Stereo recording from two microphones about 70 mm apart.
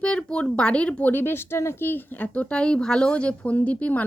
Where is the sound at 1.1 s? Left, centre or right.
Left.